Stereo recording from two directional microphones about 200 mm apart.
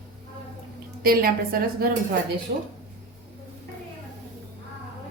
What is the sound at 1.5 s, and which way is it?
Speech, 45° right (ahead or behind).